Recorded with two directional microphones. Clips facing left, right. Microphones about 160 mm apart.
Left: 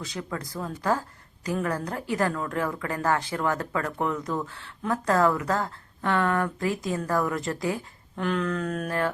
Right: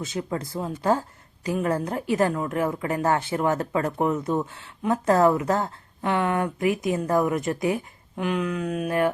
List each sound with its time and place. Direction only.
0.0 s speech: 20° right (ahead or behind)
8.1 s a sound: 10° right (ahead or behind)
8.9 s speech: 20° right (ahead or behind)